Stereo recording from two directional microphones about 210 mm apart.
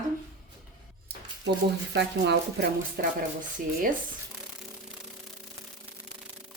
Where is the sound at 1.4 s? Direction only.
55° right (ahead or behind).